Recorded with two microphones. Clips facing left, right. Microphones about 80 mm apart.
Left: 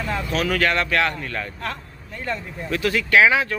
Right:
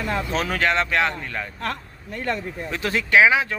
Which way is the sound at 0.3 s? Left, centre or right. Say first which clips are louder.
Left 3 dB; right.